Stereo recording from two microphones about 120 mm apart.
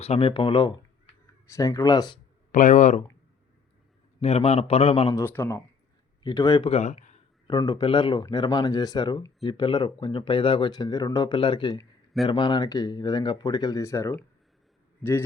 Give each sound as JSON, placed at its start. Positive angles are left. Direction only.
{"t": 0.0, "sound": "speech", "side_deg": 55}
{"t": 1.5, "sound": "speech", "side_deg": 25}
{"t": 2.5, "sound": "speech", "side_deg": 90}
{"t": 4.2, "sound": "a man's voice", "side_deg": 55}
{"t": 5.1, "sound": "speech", "side_deg": 20}
{"t": 6.2, "sound": "speech", "side_deg": 35}
{"t": 6.7, "sound": "speech", "side_deg": 60}
{"t": 7.6, "sound": "speech", "side_deg": 40}
{"t": 10.7, "sound": "speech", "side_deg": 35}
{"t": 11.3, "sound": "speech", "side_deg": 45}
{"t": 13.8, "sound": "speech", "side_deg": 25}